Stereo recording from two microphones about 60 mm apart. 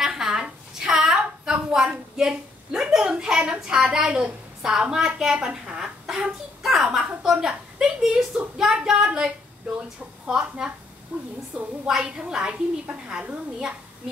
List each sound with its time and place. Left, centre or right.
0.0 s a sound: centre
7.2 s a woman's voice: centre
11.1 s a woman's voice: right